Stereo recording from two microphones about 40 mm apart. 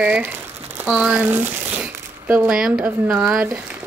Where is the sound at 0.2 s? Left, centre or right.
Right.